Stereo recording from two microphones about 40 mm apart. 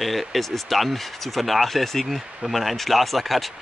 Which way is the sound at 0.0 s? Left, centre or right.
Centre.